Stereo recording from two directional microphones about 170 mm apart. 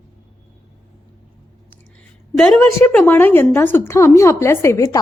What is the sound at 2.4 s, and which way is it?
A woman's voice, 5° left (ahead or behind).